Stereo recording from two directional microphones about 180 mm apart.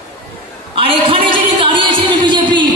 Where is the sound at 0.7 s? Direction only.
30° right (ahead or behind).